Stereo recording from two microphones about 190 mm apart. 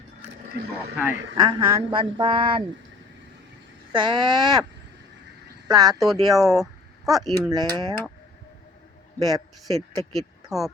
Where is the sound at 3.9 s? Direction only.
25° right (ahead or behind).